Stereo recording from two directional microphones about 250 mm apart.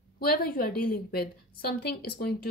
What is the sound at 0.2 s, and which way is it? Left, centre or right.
A woman's voice, left.